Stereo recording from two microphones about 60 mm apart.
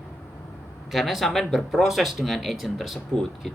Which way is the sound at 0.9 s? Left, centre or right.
Centre.